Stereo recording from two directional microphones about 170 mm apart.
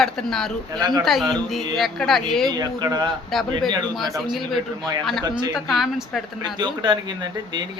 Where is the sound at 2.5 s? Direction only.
25° right (ahead or behind).